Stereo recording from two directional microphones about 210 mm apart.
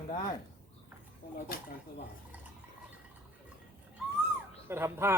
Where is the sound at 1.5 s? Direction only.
45° left (ahead or behind).